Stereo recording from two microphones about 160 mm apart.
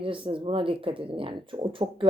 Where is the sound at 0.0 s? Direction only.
35° right (ahead or behind).